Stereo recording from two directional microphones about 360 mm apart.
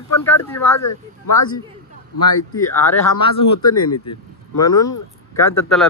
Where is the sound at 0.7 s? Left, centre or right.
Left.